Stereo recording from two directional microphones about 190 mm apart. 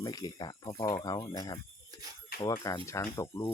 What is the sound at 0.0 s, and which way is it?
Speech, 20° left (ahead or behind).